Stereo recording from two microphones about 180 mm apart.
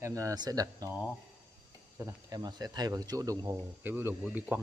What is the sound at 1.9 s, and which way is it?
A man's voice, 15° right (ahead or behind).